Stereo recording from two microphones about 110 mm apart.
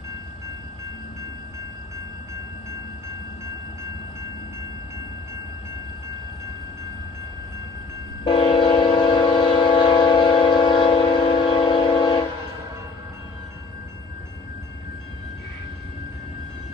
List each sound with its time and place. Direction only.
8.2 s train: 50° left (ahead or behind)